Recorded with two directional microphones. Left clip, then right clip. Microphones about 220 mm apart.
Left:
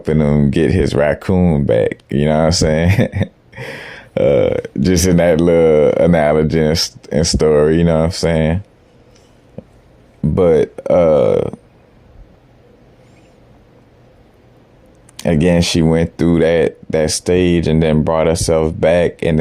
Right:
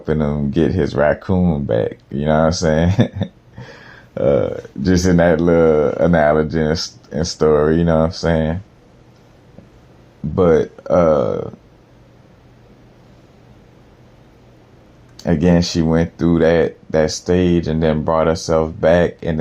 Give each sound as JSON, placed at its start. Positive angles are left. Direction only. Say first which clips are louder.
{"t": 0.0, "sound": "speech", "louder": "left 4 dB", "side_deg": 50}
{"t": 10.3, "sound": "speech", "louder": "left 2 dB", "side_deg": 50}
{"t": 15.2, "sound": "speech", "louder": "left 2 dB", "side_deg": 55}